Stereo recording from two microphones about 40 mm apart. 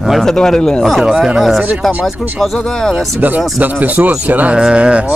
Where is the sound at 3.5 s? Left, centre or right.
Right.